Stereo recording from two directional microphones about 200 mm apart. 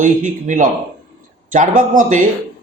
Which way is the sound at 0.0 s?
40° right (ahead or behind).